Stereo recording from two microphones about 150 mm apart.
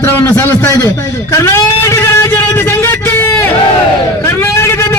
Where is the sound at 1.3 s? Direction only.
20° left (ahead or behind).